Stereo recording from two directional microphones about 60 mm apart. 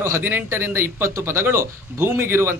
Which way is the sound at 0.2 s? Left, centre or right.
Right.